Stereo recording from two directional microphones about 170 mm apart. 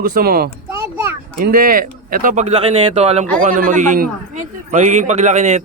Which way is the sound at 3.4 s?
50° right (ahead or behind).